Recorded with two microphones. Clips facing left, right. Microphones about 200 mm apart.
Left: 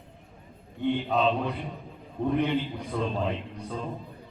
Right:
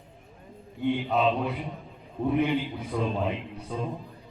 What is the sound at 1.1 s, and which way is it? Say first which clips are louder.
A man's voice: even; 5° right (ahead or behind).